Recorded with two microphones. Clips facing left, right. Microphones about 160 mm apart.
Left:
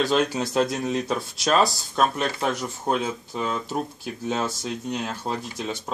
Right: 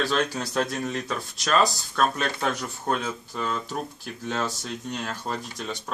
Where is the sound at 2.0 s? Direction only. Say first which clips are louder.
Left 2 dB; 10° left (ahead or behind).